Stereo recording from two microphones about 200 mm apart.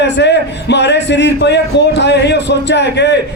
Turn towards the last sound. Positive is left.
turn(degrees=60)  # may be behind; listen again after turning